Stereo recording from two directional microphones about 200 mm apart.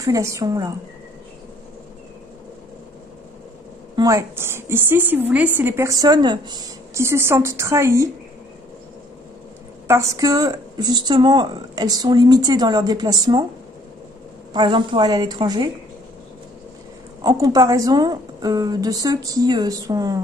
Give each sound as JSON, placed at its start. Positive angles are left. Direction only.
{"t": 0.0, "sound": "a woman's voice", "side_deg": -15}
{"t": 3.9, "sound": "a woman's voice", "side_deg": -15}
{"t": 9.8, "sound": "a woman's voice", "side_deg": -15}
{"t": 14.5, "sound": "a woman's voice", "side_deg": -25}
{"t": 17.2, "sound": "a woman's voice", "side_deg": -20}